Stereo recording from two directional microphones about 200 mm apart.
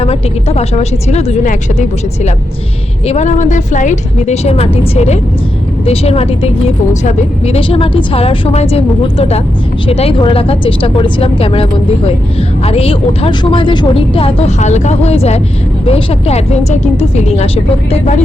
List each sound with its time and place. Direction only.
0.0 s a woman's voice: 30° left (ahead or behind)